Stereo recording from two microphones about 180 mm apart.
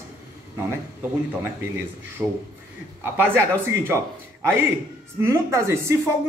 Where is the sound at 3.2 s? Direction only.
10° right (ahead or behind).